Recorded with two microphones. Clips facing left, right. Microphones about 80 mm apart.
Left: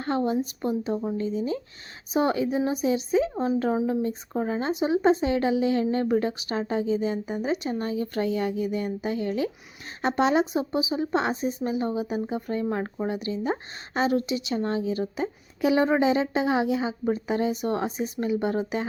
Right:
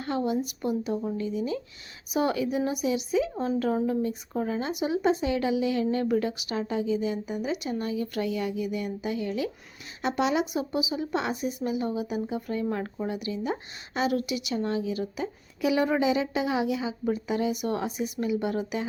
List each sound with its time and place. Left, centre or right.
0.0 s a woman's voice: left